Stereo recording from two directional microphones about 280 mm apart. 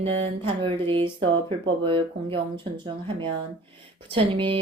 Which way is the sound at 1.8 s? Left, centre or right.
Centre.